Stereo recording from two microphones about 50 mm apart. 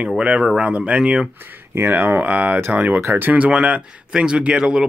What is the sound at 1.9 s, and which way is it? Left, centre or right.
Speech, right.